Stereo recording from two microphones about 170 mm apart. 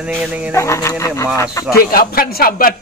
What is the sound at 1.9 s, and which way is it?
Speech, 60° left (ahead or behind).